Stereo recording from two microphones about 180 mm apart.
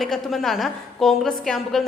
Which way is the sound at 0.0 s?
Centre (ahead or behind).